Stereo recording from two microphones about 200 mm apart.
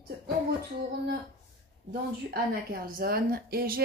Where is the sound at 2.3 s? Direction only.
50° right (ahead or behind).